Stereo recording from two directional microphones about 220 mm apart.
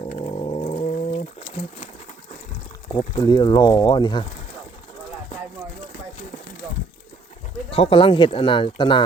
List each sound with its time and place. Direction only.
0.1 s cat: 25° left (ahead or behind)
2.9 s speech: 20° left (ahead or behind)
7.7 s speech: 25° left (ahead or behind)